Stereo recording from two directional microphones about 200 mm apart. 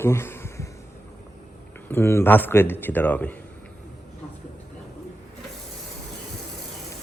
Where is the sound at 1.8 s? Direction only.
10° left (ahead or behind).